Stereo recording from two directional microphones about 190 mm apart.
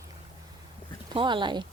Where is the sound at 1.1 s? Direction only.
25° right (ahead or behind).